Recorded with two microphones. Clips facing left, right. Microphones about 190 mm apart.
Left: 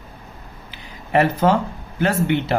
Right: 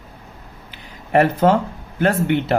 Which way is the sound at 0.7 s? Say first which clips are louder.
Right 2 dB; 50° right (ahead or behind).